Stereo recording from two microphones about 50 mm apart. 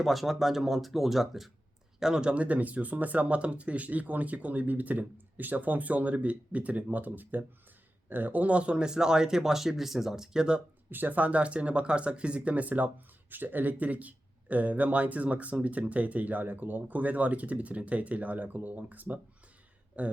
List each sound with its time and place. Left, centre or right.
0.0 s speech: centre
2.3 s speech: right
10.9 s speech: right